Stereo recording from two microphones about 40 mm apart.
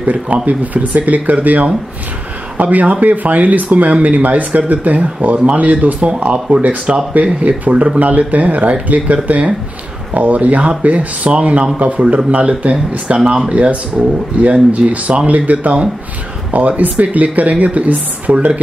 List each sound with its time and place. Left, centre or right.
0.0 s speech: right
13.2 s speech: centre
13.5 s speech: right